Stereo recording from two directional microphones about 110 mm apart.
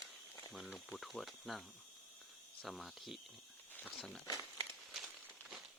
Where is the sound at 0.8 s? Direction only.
Centre (ahead or behind).